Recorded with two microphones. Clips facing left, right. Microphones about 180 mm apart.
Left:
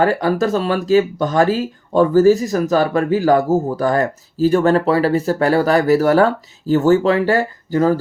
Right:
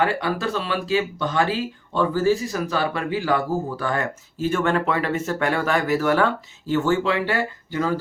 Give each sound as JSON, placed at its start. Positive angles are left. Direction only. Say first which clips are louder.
{"t": 0.0, "sound": "speech", "louder": "left 7 dB", "side_deg": 40}